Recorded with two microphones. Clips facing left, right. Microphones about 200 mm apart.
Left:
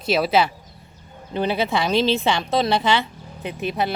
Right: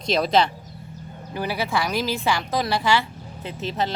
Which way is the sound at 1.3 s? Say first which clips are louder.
Left 4 dB; 20° left (ahead or behind).